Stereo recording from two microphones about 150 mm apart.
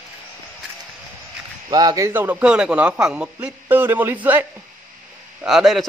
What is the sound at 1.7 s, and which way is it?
Speech, 25° right (ahead or behind).